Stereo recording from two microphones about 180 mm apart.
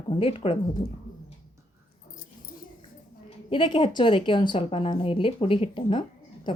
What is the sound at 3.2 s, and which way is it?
A woman's voice, 25° left (ahead or behind).